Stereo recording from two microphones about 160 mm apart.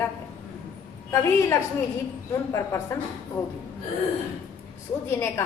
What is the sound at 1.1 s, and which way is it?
Speech, 20° left (ahead or behind).